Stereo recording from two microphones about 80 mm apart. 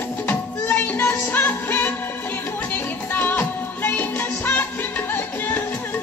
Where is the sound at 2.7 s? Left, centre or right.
Left.